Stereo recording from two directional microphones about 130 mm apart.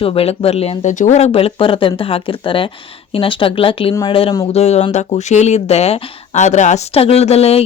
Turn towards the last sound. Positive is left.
turn(degrees=50)  # may be behind; listen again after turning